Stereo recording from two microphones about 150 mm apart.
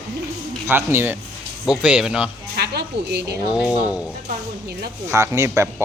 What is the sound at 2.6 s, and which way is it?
Speech, 90° right.